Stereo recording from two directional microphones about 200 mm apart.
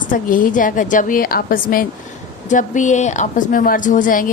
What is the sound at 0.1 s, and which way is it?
A woman's voice, 45° left (ahead or behind).